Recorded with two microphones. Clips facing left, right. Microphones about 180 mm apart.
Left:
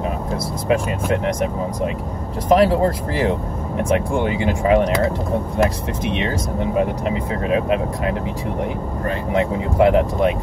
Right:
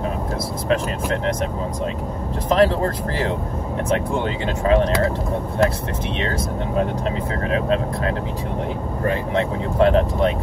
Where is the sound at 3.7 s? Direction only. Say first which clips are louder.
Left 3 dB; 15° left (ahead or behind).